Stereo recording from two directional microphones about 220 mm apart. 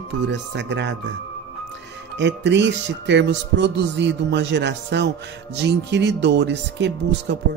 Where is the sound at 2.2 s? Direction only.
55° right (ahead or behind).